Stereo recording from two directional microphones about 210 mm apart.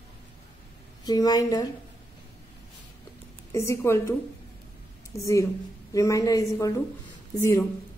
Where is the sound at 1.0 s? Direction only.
20° left (ahead or behind).